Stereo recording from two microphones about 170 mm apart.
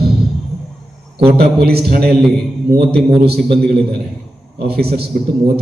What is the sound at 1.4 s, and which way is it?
A man's voice, 65° right (ahead or behind).